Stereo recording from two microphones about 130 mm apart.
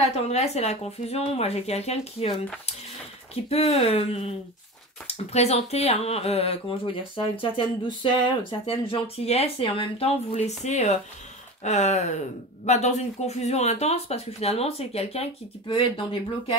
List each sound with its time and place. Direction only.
0.3 s speech: 55° left (ahead or behind)
15.7 s speech: 40° left (ahead or behind)